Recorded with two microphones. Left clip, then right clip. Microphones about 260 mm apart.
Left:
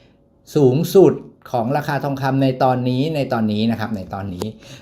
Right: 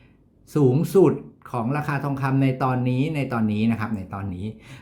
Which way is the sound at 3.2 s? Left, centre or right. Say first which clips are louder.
Left 6 dB; centre.